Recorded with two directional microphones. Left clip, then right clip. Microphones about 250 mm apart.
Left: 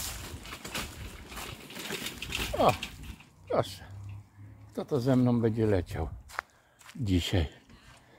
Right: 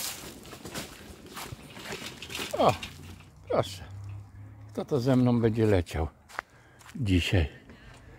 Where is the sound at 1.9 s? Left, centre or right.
Left.